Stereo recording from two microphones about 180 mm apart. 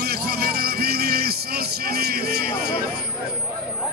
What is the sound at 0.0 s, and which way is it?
Vehicle, 60° right (ahead or behind).